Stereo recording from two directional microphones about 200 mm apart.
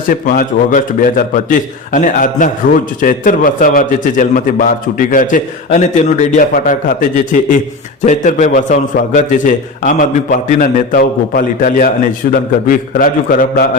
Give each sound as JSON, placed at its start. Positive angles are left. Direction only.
{"t": 0.1, "sound": "a man's voice", "side_deg": 45}
{"t": 8.0, "sound": "a man's voice", "side_deg": 35}